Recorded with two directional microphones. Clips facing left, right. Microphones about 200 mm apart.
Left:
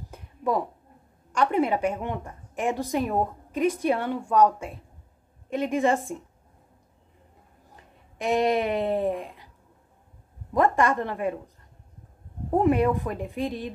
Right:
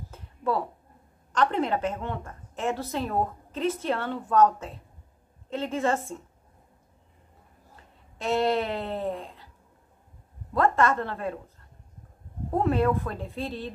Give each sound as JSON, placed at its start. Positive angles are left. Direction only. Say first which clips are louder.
{"t": 0.1, "sound": "a sound", "louder": "left 2 dB", "side_deg": 15}
{"t": 1.3, "sound": "a woman's voice", "louder": "left 2 dB", "side_deg": 10}
{"t": 8.2, "sound": "a woman's voice", "louder": "left 2 dB", "side_deg": 15}
{"t": 10.5, "sound": "a woman's voice", "louder": "left 1 dB", "side_deg": 15}
{"t": 12.5, "sound": "a woman's voice", "louder": "left 3 dB", "side_deg": 15}